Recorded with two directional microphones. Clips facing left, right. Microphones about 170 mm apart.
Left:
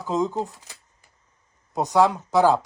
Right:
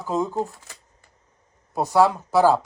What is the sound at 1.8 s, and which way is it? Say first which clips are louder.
Speech: right 1 dB; 15° left (ahead or behind).